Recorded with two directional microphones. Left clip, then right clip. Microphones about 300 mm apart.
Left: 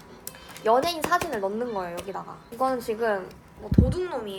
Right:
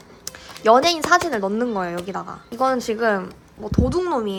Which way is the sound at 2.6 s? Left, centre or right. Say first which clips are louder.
Right 6 dB; right.